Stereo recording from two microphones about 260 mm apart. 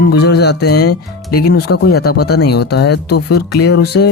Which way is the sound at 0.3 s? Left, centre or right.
Left.